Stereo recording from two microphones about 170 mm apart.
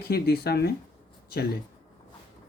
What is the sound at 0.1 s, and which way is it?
Speech, 65° left (ahead or behind).